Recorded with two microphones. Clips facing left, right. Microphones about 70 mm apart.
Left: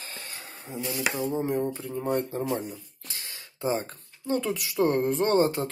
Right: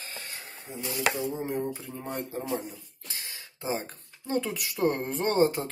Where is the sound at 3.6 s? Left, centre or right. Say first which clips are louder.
Left 4 dB; centre.